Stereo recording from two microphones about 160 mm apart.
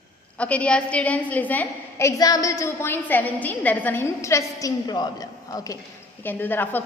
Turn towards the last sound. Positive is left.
turn(degrees=10)  # may be behind; listen again after turning